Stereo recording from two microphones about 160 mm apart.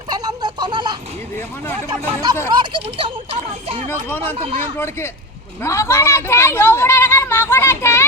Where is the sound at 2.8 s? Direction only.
35° right (ahead or behind).